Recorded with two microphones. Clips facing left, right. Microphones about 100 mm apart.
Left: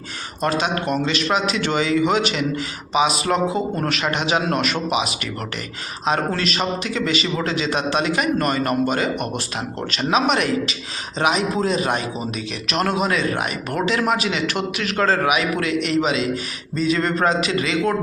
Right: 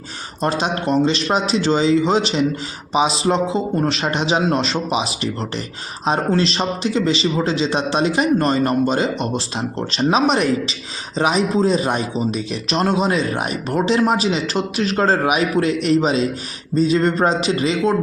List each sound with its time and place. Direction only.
0.4 s a man's voice: 30° right (ahead or behind)
2.9 s a sound: 35° right (ahead or behind)
3.2 s a man's voice: 25° right (ahead or behind)